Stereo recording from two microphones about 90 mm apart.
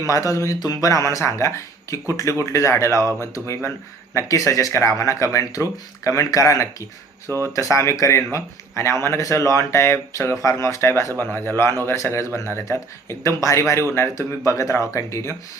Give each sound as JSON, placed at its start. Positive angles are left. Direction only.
{"t": 0.1, "sound": "speech", "side_deg": 35}
{"t": 7.3, "sound": "speech", "side_deg": -35}
{"t": 7.5, "sound": "a man's voice", "side_deg": 35}